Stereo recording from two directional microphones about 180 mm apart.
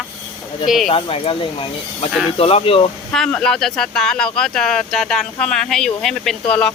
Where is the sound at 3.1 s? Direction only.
5° left (ahead or behind).